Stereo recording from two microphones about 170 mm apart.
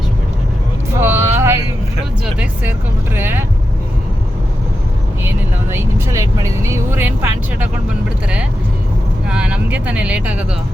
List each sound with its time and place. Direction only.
0.9 s vehicle: 15° right (ahead or behind)
2.2 s speech: 10° right (ahead or behind)
5.7 s speech: 20° right (ahead or behind)
9.2 s speech: 5° right (ahead or behind)